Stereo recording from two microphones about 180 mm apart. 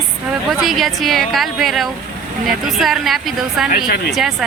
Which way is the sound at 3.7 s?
50° left (ahead or behind).